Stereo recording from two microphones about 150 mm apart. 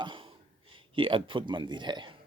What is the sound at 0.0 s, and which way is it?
Speech, 35° right (ahead or behind).